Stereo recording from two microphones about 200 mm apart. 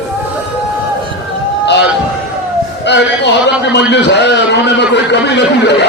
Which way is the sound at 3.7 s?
60° left (ahead or behind).